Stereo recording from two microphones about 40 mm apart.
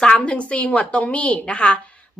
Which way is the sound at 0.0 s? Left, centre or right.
Left.